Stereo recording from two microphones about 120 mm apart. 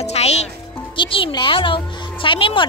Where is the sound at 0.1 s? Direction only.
65° left (ahead or behind).